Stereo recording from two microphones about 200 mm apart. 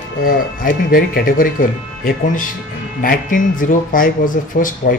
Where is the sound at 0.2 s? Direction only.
45° left (ahead or behind).